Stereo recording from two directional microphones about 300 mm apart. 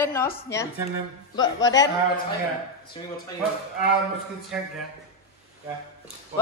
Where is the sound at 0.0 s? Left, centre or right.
Centre.